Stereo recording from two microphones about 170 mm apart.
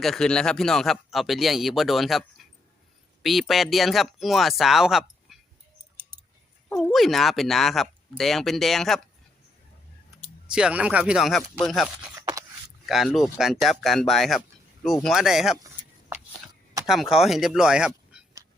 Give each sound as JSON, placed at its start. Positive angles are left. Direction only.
{"t": 0.0, "sound": "speech", "side_deg": 5}
{"t": 6.7, "sound": "speech", "side_deg": 5}
{"t": 10.4, "sound": "speech", "side_deg": -5}
{"t": 15.5, "sound": "a sound", "side_deg": -20}
{"t": 16.8, "sound": "speech", "side_deg": 0}